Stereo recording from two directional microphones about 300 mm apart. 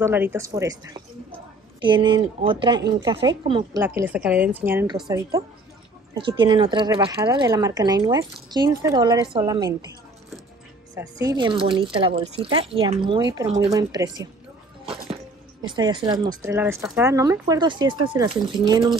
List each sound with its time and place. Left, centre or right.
0.0 s speech: centre
11.0 s speech: centre
15.6 s speech: centre